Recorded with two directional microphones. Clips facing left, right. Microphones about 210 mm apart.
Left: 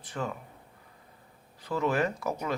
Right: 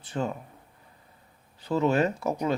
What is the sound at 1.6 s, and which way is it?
Speech, 25° right (ahead or behind).